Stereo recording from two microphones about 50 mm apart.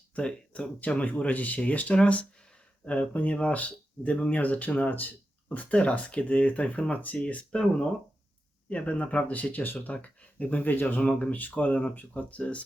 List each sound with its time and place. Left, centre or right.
0.2 s speech: left
5.5 s speech: left
8.7 s speech: left